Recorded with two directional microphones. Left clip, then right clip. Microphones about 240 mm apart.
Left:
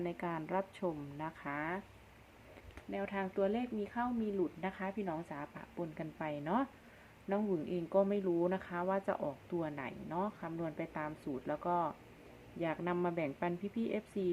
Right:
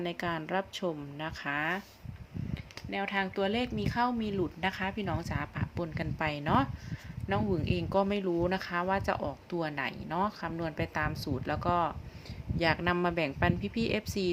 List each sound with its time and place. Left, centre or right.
0.0 s speech: centre
2.9 s speech: centre